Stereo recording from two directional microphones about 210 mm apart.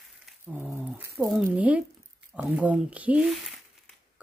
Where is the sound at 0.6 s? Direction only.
10° right (ahead or behind).